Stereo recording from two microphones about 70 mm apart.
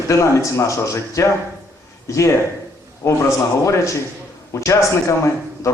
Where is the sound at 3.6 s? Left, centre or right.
Left.